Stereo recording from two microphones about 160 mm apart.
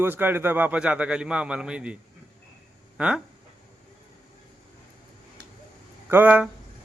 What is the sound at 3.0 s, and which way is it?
Speech, 5° right (ahead or behind).